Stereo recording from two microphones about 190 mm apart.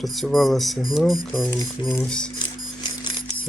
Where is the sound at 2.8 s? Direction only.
25° left (ahead or behind).